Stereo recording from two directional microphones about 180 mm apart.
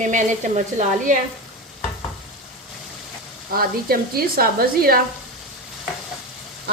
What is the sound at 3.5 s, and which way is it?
Speech, 55° right (ahead or behind).